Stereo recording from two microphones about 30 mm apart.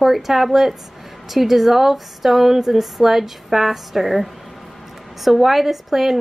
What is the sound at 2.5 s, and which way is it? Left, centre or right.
A woman's voice, centre.